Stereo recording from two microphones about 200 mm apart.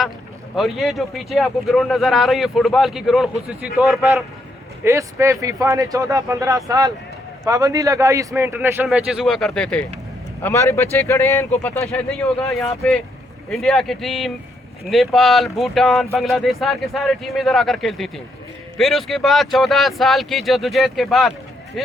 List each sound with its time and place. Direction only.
0.5 s speech: centre (ahead or behind)
13.5 s speech: centre (ahead or behind)